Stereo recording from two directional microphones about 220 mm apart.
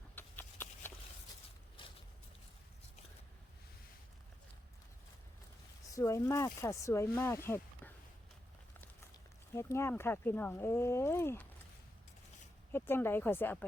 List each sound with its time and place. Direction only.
0.2 s a sound: 10° left (ahead or behind)
5.9 s speech: 15° left (ahead or behind)
9.6 s speech: 10° left (ahead or behind)
12.7 s speech: 10° left (ahead or behind)